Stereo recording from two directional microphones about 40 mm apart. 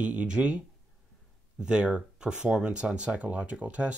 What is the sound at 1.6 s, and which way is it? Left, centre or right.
Speech, right.